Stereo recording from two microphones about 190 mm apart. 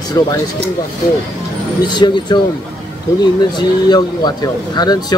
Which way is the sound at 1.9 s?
25° left (ahead or behind).